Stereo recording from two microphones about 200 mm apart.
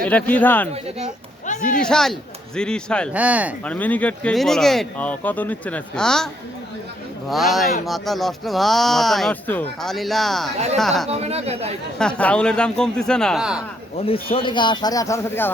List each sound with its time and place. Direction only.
0.0 s speech: 5° left (ahead or behind)
1.5 s a man's voice: 40° left (ahead or behind)
1.8 s speech: 5° left (ahead or behind)
3.1 s speech: 5° right (ahead or behind)
3.6 s speech: 5° left (ahead or behind)
7.3 s speech: centre (ahead or behind)
11.1 s speech: 30° right (ahead or behind)
11.9 s speech: 5° left (ahead or behind)
13.9 s speech: 30° left (ahead or behind)